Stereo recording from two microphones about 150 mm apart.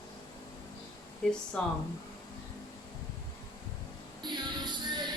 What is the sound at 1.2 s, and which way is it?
Speech, 5° left (ahead or behind).